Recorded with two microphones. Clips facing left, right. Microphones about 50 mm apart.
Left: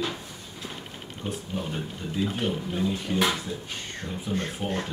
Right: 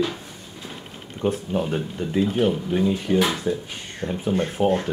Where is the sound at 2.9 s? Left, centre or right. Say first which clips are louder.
Right 5 dB; right.